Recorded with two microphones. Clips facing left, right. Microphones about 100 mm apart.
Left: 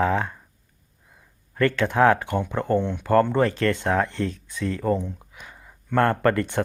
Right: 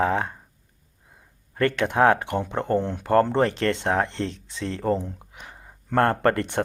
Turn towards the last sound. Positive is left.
turn(degrees=-25)  # may be behind; listen again after turning